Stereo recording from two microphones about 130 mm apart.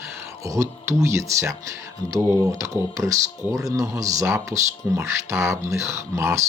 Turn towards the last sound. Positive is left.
turn(degrees=-20)  # may be behind; listen again after turning